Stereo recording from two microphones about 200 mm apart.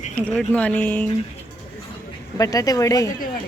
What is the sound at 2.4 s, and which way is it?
Speech, 20° left (ahead or behind).